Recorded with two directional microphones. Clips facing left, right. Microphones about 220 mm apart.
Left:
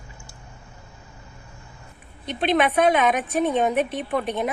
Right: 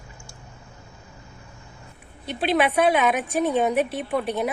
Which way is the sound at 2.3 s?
5° right (ahead or behind).